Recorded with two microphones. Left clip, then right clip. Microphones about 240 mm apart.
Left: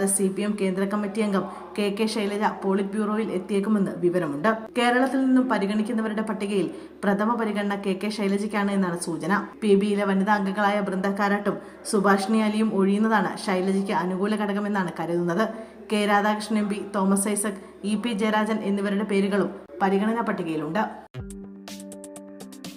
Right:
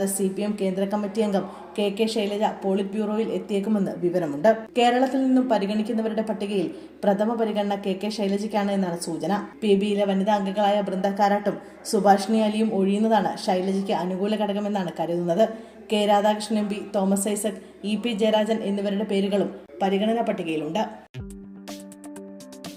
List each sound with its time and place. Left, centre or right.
0.0 s speech: centre
10.0 s a woman's voice: left
10.7 s speech: centre
17.4 s a woman's voice: left
18.1 s speech: centre
20.1 s a woman's voice: left